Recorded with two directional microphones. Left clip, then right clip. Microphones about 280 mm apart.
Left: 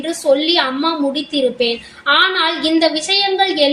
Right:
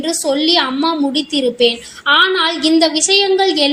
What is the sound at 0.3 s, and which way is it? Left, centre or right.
A woman's voice, right.